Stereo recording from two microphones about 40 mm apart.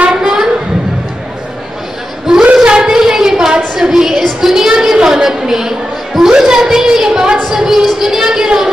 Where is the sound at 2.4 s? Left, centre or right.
Right.